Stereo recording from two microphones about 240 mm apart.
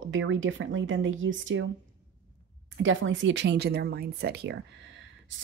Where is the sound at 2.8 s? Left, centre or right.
Right.